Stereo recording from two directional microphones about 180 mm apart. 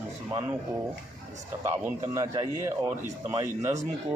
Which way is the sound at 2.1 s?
20° right (ahead or behind).